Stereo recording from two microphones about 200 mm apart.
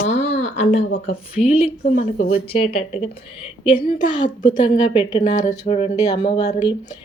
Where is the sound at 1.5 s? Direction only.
30° left (ahead or behind).